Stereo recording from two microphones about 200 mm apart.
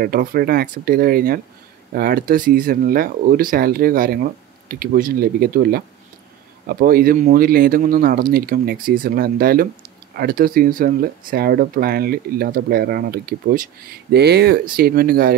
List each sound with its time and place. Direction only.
0.0 s speech: 50° right (ahead or behind)